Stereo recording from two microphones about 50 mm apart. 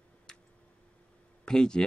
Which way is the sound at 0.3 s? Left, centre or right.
Centre.